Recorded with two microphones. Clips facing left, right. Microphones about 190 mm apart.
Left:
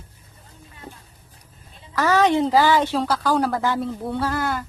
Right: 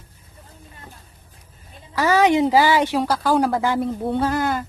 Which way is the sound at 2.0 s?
10° right (ahead or behind).